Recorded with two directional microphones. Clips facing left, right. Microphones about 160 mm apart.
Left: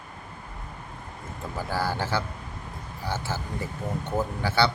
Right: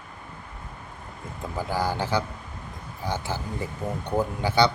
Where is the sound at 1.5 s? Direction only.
15° right (ahead or behind).